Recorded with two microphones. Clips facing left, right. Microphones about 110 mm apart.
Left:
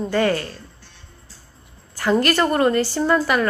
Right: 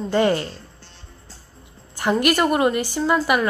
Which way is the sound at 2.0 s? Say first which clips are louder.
Left 1 dB; 15° right (ahead or behind).